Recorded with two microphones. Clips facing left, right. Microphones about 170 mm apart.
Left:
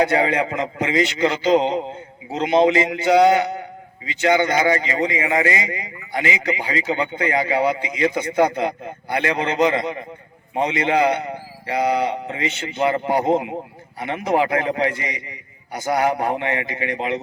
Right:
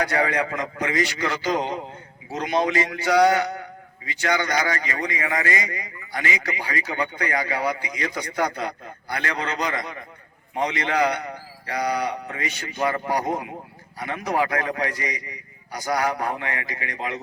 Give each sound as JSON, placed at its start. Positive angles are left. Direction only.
{"t": 0.0, "sound": "a man's voice", "side_deg": 20}